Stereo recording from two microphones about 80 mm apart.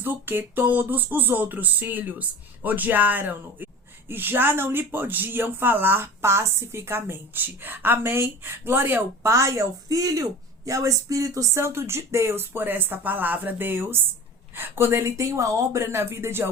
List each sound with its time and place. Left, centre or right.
0.0 s speech: right
9.2 s a woman's voice: right